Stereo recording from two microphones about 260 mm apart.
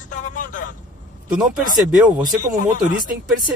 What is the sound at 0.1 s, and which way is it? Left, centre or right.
Speech, left.